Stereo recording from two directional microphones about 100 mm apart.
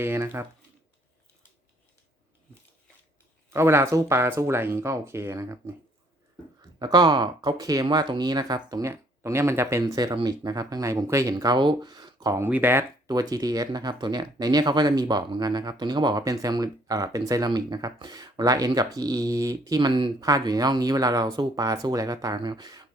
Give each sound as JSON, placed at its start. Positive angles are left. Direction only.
{"t": 0.0, "sound": "speech", "side_deg": -25}
{"t": 3.5, "sound": "speech", "side_deg": -25}
{"t": 6.6, "sound": "speech", "side_deg": -40}
{"t": 7.6, "sound": "speech", "side_deg": -35}
{"t": 8.9, "sound": "speech", "side_deg": -25}
{"t": 9.8, "sound": "speech", "side_deg": -40}
{"t": 12.4, "sound": "speech", "side_deg": -20}
{"t": 13.1, "sound": "speech", "side_deg": -40}
{"t": 19.8, "sound": "speech", "side_deg": -55}
{"t": 20.2, "sound": "speech", "side_deg": -40}